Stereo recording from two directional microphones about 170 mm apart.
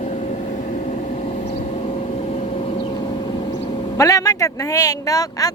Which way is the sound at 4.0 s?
20° left (ahead or behind).